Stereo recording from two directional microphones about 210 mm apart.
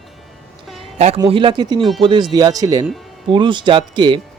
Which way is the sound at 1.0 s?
30° right (ahead or behind).